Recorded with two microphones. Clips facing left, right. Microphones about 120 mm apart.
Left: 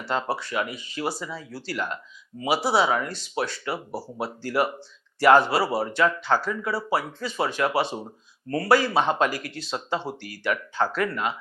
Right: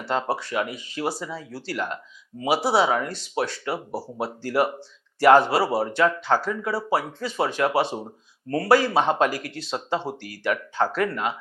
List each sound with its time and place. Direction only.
0.0 s speech: 45° right (ahead or behind)
1.1 s speech: 40° right (ahead or behind)